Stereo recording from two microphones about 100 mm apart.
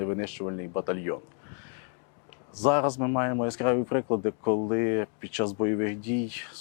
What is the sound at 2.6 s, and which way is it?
Speech, 20° left (ahead or behind).